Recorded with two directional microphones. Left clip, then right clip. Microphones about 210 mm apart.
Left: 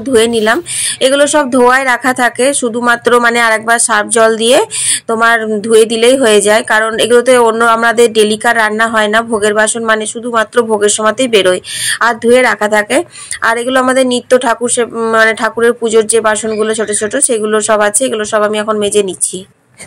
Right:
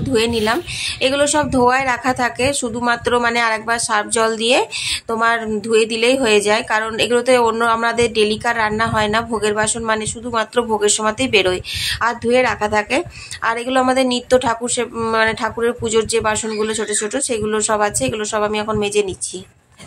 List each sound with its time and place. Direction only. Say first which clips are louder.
0.1 s a woman's voice: left 8 dB; 20° left (ahead or behind)